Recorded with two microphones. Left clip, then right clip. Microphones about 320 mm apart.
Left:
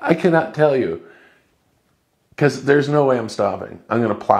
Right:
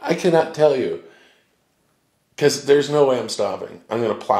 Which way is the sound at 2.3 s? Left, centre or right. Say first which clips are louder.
Even; left.